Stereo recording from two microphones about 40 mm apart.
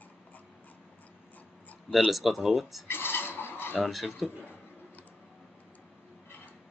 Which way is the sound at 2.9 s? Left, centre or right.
Left.